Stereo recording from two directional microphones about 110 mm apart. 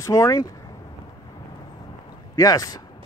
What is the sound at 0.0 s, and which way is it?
Speech, 30° left (ahead or behind).